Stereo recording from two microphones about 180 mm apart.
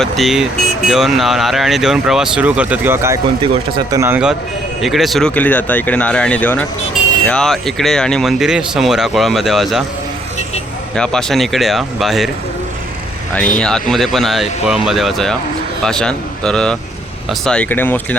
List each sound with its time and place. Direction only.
0.0 s speech: centre (ahead or behind)
3.4 s speech: 30° right (ahead or behind)
4.0 s speech: 10° right (ahead or behind)
10.9 s speech: 5° left (ahead or behind)
13.6 s speech: 5° left (ahead or behind)